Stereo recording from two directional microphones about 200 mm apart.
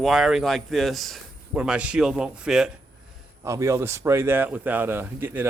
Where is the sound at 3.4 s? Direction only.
15° right (ahead or behind).